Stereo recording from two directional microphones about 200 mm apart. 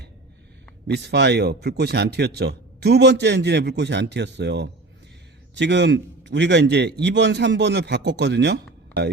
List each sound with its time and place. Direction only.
0.9 s a man's voice: 55° right (ahead or behind)